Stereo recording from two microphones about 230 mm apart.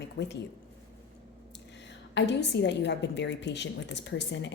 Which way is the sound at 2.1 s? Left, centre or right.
Left.